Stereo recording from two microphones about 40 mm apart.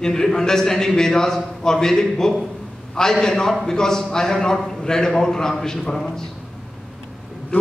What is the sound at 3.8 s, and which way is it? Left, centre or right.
A man's voice, centre.